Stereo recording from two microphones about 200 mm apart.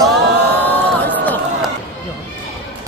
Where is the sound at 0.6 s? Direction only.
10° left (ahead or behind).